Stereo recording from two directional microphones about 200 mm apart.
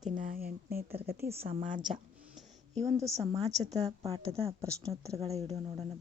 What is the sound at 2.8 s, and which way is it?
Speech, 15° right (ahead or behind).